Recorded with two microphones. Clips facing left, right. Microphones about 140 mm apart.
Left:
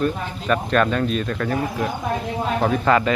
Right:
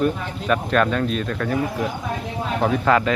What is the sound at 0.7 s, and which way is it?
Speech, centre (ahead or behind).